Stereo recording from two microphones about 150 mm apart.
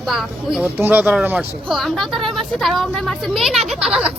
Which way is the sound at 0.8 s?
10° right (ahead or behind).